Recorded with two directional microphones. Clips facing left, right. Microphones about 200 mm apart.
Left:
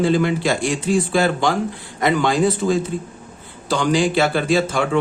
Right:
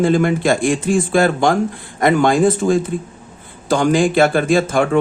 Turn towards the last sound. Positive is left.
turn(degrees=-50)  # may be behind; listen again after turning